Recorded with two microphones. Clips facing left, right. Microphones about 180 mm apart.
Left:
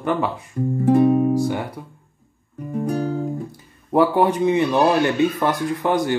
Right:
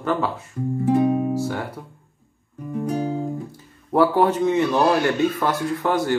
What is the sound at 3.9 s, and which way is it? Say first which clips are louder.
Speech: left 1 dB; 15° left (ahead or behind).